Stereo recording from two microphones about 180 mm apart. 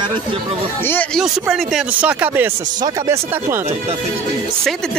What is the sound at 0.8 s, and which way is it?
Speech, 10° left (ahead or behind).